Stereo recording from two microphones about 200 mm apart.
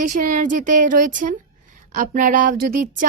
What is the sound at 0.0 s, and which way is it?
A woman's voice, 40° right (ahead or behind).